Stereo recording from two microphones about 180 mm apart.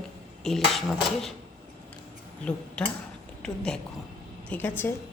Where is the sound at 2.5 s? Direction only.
5° left (ahead or behind).